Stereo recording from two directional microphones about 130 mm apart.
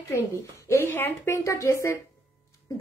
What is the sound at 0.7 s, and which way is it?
A woman's voice, 15° left (ahead or behind).